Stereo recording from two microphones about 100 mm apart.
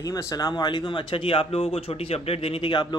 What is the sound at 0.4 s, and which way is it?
Speech, 40° left (ahead or behind).